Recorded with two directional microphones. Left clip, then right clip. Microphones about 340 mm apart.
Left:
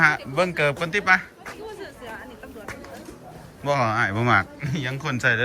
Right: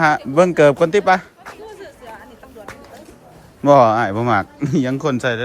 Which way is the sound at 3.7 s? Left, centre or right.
Centre.